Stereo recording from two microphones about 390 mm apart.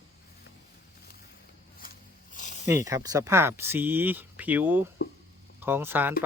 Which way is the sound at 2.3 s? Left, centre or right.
Centre.